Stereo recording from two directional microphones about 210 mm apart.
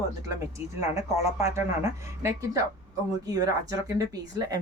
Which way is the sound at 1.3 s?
15° right (ahead or behind).